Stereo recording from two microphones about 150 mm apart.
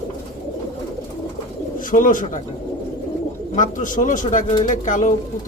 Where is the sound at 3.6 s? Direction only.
60° left (ahead or behind).